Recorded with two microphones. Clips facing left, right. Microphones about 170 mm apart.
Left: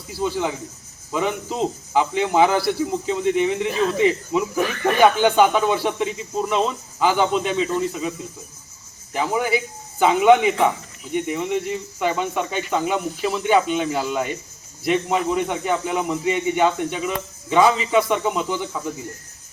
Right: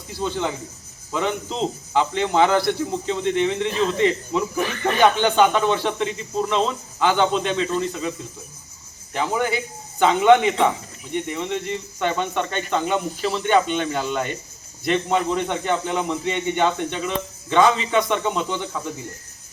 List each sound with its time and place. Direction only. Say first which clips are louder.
0.1 s speech: left 2 dB; 5° left (ahead or behind)
9.1 s speech: left 1 dB; 10° left (ahead or behind)